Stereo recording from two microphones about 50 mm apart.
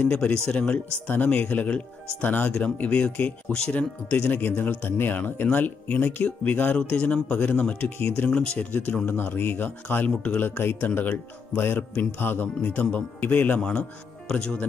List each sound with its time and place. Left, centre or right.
0.0 s speech: left
0.3 s speech: centre
0.7 s speech: left
2.6 s speech: left
3.3 s speech: left
3.7 s speech: left
4.4 s speech: left
6.9 s speech: left
8.5 s speech: left
10.0 s speech: left
10.4 s speech: left
13.6 s speech: centre